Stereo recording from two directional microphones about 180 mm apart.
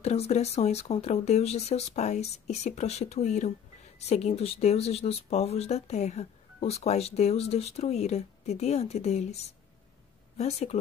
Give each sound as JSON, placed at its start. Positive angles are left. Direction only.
{"t": 0.0, "sound": "speech", "side_deg": 35}